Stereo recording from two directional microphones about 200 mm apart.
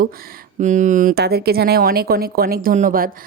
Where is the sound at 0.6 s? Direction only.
40° right (ahead or behind).